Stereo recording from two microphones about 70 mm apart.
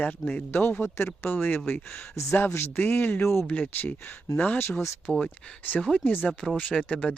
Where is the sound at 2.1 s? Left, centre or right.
Left.